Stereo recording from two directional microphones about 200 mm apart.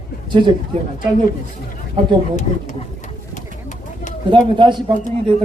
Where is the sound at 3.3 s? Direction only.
40° left (ahead or behind).